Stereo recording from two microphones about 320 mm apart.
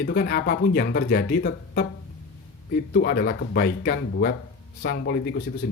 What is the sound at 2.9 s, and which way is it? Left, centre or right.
Speech, left.